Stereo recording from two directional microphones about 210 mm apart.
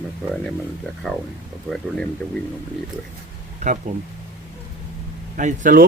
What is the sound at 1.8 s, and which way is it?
Speech, 5° left (ahead or behind).